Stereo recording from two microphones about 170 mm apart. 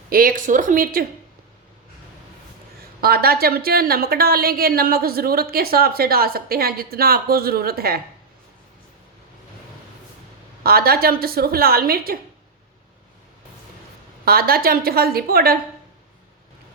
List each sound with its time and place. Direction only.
0.1 s a woman's voice: 55° right (ahead or behind)
3.0 s a woman's voice: 65° right (ahead or behind)
10.6 s a woman's voice: 65° right (ahead or behind)
14.3 s a woman's voice: 60° right (ahead or behind)